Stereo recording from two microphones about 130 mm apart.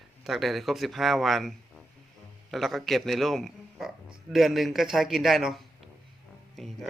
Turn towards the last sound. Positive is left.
turn(degrees=0)  # may be behind; listen again after turning